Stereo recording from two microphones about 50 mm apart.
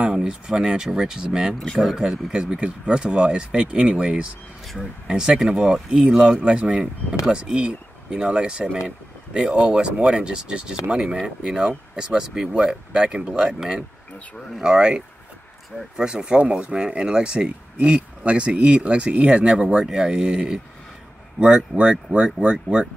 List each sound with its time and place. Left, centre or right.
0.0 s speech: centre